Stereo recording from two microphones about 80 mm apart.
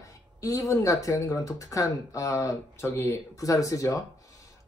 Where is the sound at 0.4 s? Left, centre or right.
Left.